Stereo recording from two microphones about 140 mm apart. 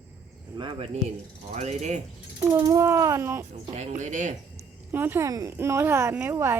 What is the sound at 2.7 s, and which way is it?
Speech, 20° right (ahead or behind).